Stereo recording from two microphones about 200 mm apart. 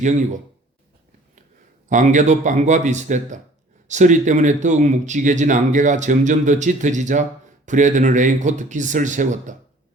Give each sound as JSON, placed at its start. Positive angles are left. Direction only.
{"t": 1.9, "sound": "speech", "side_deg": -40}